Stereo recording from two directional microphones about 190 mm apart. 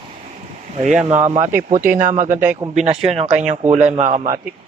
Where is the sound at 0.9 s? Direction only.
10° right (ahead or behind).